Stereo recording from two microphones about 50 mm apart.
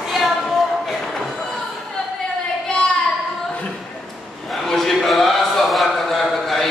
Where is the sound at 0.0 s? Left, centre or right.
Centre.